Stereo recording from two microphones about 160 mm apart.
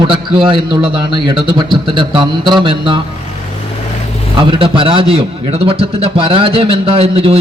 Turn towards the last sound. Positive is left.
turn(degrees=-40)  # may be behind; listen again after turning